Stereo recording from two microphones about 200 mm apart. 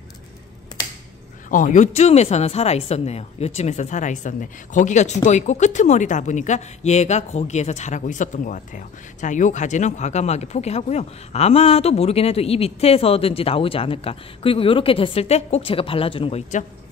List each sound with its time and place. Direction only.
1.5 s a woman's voice: 40° left (ahead or behind)